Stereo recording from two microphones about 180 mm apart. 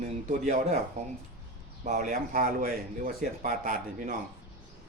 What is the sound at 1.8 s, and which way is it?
Speech, 45° right (ahead or behind).